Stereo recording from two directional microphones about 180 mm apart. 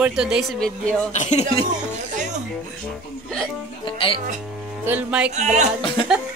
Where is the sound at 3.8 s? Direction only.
30° left (ahead or behind).